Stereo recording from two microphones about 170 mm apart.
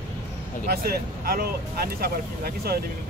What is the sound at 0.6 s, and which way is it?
Speech, 60° right (ahead or behind).